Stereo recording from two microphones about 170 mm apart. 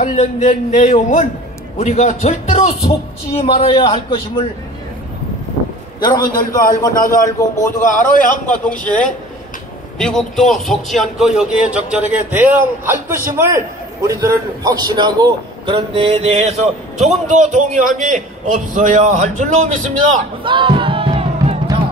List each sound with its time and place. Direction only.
0.0 s a man's voice: 45° left (ahead or behind)
5.9 s a man's voice: 25° left (ahead or behind)
6.2 s a man's voice: 55° left (ahead or behind)
7.1 s speech: 20° left (ahead or behind)
9.9 s a man's voice: 5° left (ahead or behind); by 20.2 s 45° right (ahead or behind)
20.4 s music: 30° right (ahead or behind)